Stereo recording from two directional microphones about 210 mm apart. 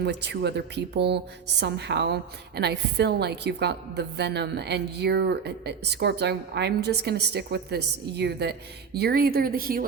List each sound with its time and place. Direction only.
0.0 s a woman's voice: 55° right (ahead or behind)